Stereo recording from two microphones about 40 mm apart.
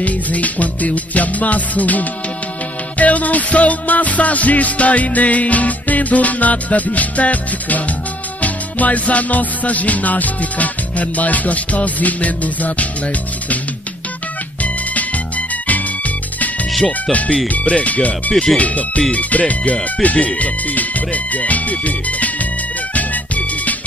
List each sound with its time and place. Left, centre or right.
0.0 s music: left
14.6 s music: left
17.5 s music: left
18.3 s speech: centre
18.6 s music: left